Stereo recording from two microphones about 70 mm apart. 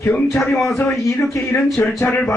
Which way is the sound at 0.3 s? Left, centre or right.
Centre.